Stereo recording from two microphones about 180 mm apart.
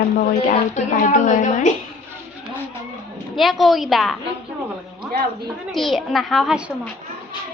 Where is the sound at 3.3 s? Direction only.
Centre (ahead or behind).